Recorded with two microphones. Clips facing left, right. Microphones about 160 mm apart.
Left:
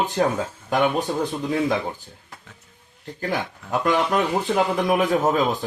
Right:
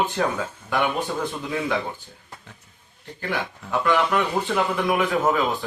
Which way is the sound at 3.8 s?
40° left (ahead or behind).